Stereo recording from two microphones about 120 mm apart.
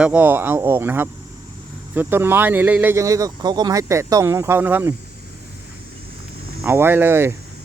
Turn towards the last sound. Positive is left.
turn(degrees=-20)  # may be behind; listen again after turning